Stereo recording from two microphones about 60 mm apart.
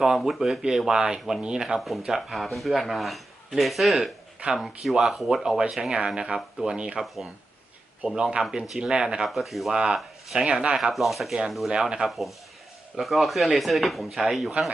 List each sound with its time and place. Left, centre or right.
0.3 s speech: centre
8.0 s speech: centre
9.3 s speech: centre
9.7 s speech: centre
10.8 s speech: centre
11.7 s speech: centre
13.0 s speech: centre